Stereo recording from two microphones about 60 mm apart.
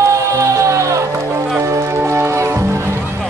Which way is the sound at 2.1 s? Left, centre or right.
Right.